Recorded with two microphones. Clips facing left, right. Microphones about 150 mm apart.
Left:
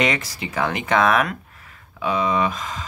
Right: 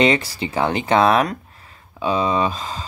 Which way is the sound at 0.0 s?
30° right (ahead or behind).